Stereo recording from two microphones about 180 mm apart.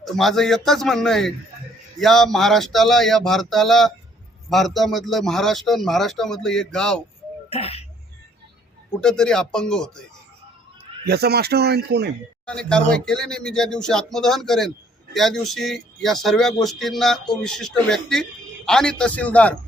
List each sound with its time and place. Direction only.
0.0 s speech: centre (ahead or behind)
7.5 s speech: 35° left (ahead or behind)
9.0 s speech: 5° left (ahead or behind)
11.0 s speech: 65° right (ahead or behind)
12.5 s speech: 5° left (ahead or behind)